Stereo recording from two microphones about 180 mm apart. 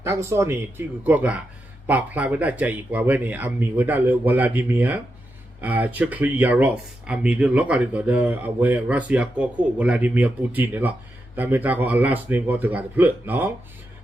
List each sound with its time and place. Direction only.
0.0 s speech: 15° right (ahead or behind)